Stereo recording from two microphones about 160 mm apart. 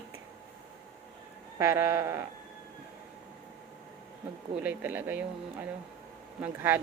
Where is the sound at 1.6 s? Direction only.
20° right (ahead or behind).